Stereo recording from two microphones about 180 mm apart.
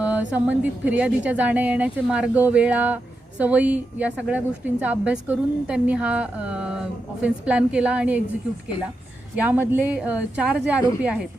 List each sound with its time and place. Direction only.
0.0 s speech: 10° right (ahead or behind)
9.3 s a woman's voice: 10° right (ahead or behind)